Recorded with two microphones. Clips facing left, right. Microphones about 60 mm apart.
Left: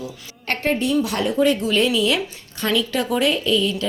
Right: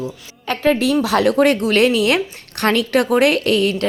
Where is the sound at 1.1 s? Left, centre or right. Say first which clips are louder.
Right 5 dB; right.